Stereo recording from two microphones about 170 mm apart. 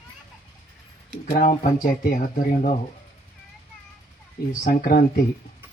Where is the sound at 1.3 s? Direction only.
30° left (ahead or behind).